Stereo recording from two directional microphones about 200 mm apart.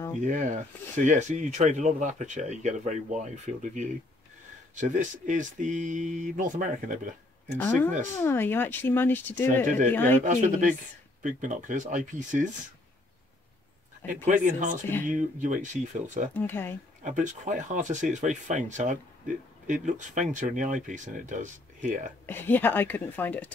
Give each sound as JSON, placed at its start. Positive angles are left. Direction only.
{"t": 0.2, "sound": "speech", "side_deg": -40}
{"t": 7.5, "sound": "speech", "side_deg": 10}
{"t": 10.1, "sound": "speech", "side_deg": -35}
{"t": 14.0, "sound": "speech", "side_deg": -40}
{"t": 16.3, "sound": "speech", "side_deg": 10}
{"t": 17.0, "sound": "speech", "side_deg": -40}
{"t": 22.2, "sound": "speech", "side_deg": 10}